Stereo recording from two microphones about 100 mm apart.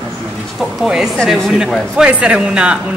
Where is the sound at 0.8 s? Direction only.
5° right (ahead or behind).